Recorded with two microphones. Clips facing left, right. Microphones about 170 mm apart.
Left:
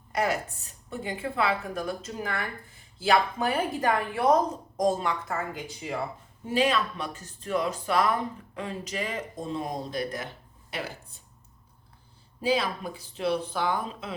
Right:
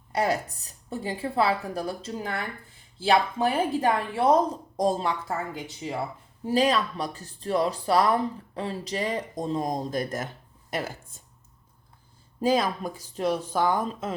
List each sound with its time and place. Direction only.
0.1 s a woman's voice: 35° right (ahead or behind)
6.4 s speech: 40° right (ahead or behind)
12.4 s speech: 45° right (ahead or behind)